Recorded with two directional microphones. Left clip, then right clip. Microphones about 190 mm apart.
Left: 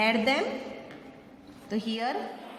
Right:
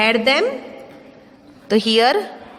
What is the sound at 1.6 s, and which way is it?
Speech, 50° right (ahead or behind).